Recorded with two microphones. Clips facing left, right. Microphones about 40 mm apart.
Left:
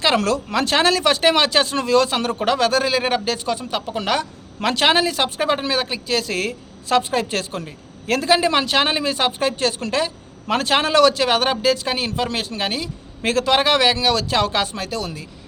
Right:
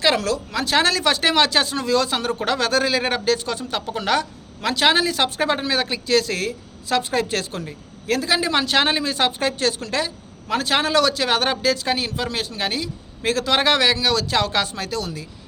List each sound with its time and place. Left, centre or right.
0.2 s speech: left
0.8 s a man's voice: left
2.4 s a man's voice: centre
4.6 s a man's voice: left
4.9 s a man's voice: left
5.4 s a man's voice: centre; by 7.6 s left
8.0 s a man's voice: left
8.4 s a man's voice: centre
13.5 s a man's voice: centre